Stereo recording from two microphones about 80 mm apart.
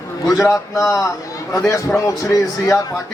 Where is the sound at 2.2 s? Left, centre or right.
Left.